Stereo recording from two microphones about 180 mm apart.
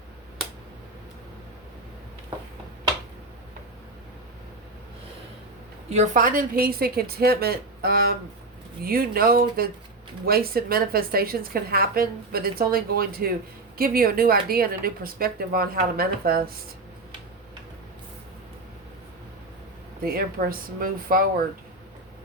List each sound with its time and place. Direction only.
5.9 s a woman's voice: 45° right (ahead or behind)
20.1 s speech: 55° right (ahead or behind)